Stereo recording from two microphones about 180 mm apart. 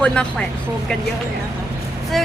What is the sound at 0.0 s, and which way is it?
Speech, 5° left (ahead or behind).